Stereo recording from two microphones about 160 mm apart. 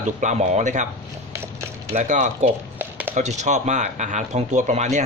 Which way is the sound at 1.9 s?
50° right (ahead or behind).